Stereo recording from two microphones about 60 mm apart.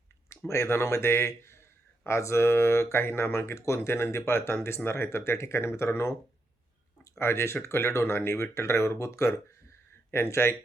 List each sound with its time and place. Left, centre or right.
0.3 s speech: left
10.1 s speech: left